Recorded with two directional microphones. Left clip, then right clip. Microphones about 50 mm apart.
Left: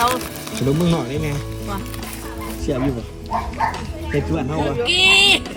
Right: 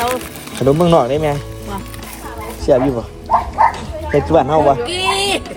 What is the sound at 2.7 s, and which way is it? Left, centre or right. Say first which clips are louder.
Speech: right 12 dB; left.